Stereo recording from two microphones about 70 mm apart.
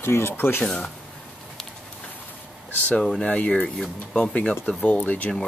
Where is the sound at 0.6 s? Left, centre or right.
Centre.